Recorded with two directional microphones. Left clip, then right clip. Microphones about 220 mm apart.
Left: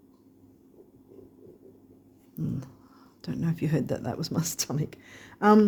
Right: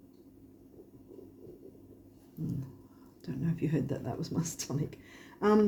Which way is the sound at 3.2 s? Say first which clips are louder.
Left 4 dB; 50° left (ahead or behind).